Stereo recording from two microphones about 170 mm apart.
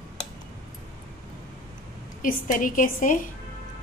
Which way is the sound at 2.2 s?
50° left (ahead or behind).